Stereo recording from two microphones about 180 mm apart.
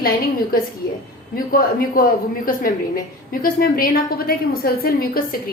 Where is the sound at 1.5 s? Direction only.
55° left (ahead or behind).